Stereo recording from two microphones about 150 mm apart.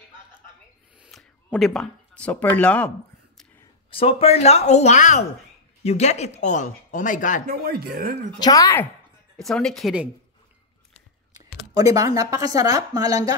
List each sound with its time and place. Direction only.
0.9 s a sound: 5° right (ahead or behind)
1.5 s speech: centre (ahead or behind)
3.9 s speech: 40° left (ahead or behind); by 7.4 s 60° left (ahead or behind)
7.4 s speech: 90° right
8.4 s speech: 25° left (ahead or behind)
9.4 s speech: centre (ahead or behind)
11.3 s a sound: 25° right (ahead or behind)
12.2 s speech: 25° right (ahead or behind)